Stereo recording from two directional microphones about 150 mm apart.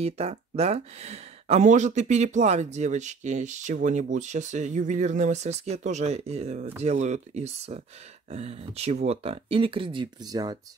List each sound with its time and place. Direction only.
0.0 s speech: 45° right (ahead or behind); by 10.6 s 25° right (ahead or behind)